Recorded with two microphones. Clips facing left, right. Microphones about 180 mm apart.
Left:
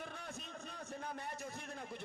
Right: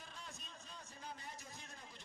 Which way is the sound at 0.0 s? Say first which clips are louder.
Left 8 dB; 60° left (ahead or behind).